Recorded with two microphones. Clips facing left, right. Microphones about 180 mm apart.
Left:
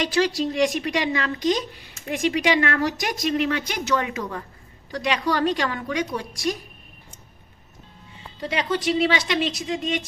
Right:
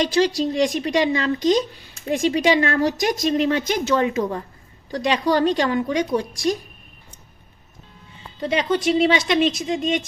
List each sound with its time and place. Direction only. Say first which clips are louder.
0.3 s speech: right 2 dB; 30° right (ahead or behind)
8.4 s speech: right 4 dB; 20° right (ahead or behind)